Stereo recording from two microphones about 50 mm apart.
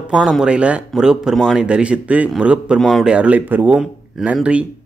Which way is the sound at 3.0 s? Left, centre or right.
Right.